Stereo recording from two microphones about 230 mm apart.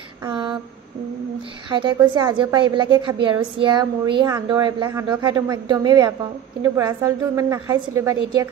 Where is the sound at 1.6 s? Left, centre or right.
Right.